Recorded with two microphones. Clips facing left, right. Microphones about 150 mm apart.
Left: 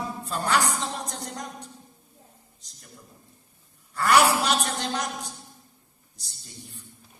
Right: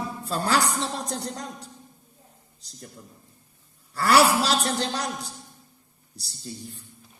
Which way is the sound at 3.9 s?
35° right (ahead or behind).